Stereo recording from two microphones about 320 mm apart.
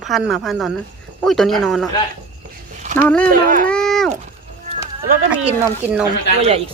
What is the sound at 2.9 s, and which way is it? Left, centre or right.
Speech, centre.